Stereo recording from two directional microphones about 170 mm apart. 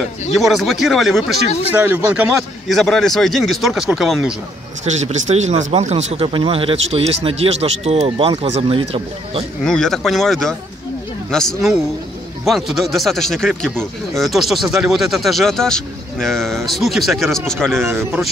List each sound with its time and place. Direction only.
0.4 s speech: centre (ahead or behind)
1.7 s speech: 10° right (ahead or behind)
4.8 s speech: 40° right (ahead or behind)
9.6 s speech: 5° left (ahead or behind)
17.8 s speech: 15° right (ahead or behind)